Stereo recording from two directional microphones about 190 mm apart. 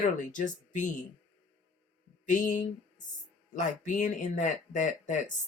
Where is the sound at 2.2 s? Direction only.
40° left (ahead or behind).